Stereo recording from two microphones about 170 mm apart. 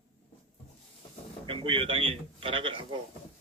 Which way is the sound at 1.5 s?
30° right (ahead or behind).